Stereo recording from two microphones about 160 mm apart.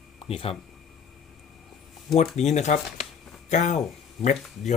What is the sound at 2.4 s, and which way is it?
Speech, 45° left (ahead or behind).